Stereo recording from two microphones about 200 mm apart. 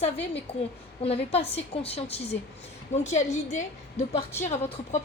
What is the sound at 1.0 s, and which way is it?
A woman's voice, 30° left (ahead or behind).